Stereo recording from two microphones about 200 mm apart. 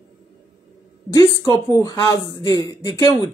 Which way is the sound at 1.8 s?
15° left (ahead or behind).